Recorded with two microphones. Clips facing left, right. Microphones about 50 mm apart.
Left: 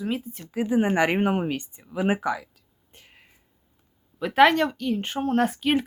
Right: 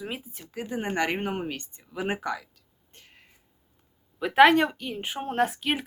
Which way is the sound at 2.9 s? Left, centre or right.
Centre.